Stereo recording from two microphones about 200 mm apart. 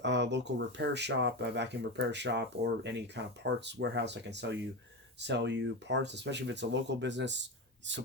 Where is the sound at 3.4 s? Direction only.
60° right (ahead or behind).